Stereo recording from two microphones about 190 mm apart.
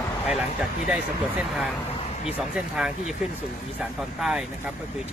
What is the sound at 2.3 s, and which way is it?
Speech, 5° right (ahead or behind).